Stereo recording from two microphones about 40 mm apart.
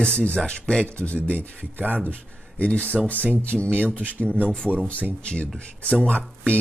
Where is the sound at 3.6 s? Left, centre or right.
Right.